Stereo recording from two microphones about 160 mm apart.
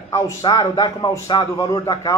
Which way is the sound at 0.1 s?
20° left (ahead or behind).